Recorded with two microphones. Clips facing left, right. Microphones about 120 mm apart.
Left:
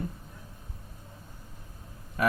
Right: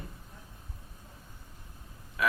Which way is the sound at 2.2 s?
45° left (ahead or behind).